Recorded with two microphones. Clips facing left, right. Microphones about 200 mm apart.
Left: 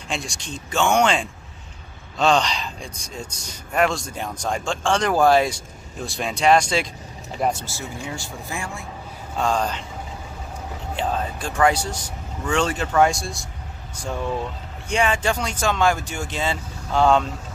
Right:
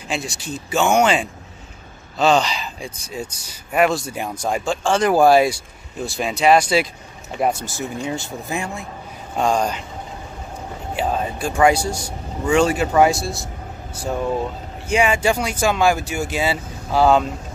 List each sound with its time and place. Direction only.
0.1 s speech: 5° right (ahead or behind)
7.6 s speech: 20° right (ahead or behind)
11.0 s speech: 10° right (ahead or behind)
14.9 s speech: 10° right (ahead or behind)